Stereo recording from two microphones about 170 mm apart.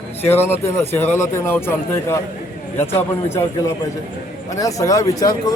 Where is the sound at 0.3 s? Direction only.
15° left (ahead or behind).